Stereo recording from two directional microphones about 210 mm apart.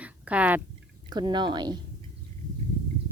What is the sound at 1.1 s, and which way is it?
Speech, 20° right (ahead or behind).